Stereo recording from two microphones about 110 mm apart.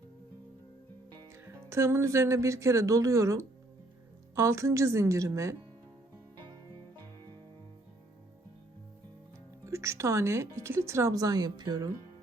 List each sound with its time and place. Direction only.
1.5 s speech: 25° right (ahead or behind)
9.6 s speech: 25° right (ahead or behind)